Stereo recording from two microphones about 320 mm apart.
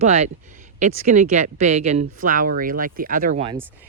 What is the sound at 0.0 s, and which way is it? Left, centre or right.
Speech, right.